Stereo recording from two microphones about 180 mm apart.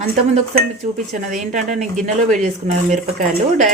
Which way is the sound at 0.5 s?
45° right (ahead or behind).